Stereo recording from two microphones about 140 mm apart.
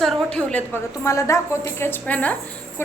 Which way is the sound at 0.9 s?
20° left (ahead or behind).